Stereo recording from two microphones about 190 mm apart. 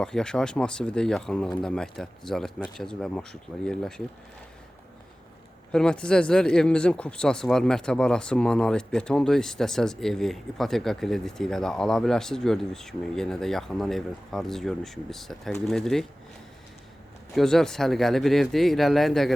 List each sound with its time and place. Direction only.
0.0 s speech: 5° left (ahead or behind)
5.7 s speech: 5° left (ahead or behind)
17.3 s speech: centre (ahead or behind)